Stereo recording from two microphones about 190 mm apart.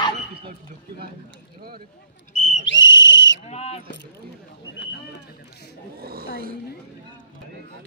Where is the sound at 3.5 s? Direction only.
35° left (ahead or behind).